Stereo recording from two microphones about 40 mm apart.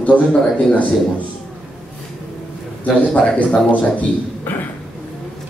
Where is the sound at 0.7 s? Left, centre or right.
Left.